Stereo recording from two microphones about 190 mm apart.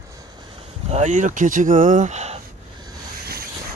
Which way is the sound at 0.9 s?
40° right (ahead or behind).